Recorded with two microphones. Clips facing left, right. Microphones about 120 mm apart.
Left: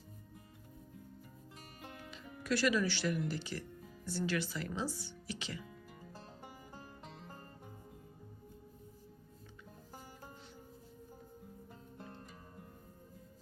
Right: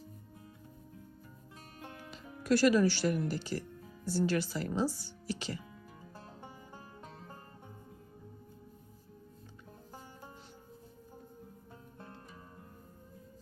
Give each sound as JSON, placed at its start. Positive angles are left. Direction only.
{"t": 2.0, "sound": "speech", "side_deg": -40}